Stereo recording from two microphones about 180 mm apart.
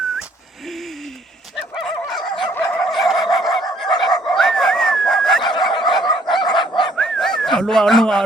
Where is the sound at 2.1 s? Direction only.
25° left (ahead or behind).